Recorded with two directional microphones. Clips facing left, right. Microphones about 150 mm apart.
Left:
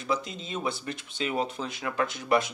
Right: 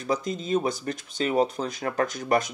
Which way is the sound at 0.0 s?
40° right (ahead or behind).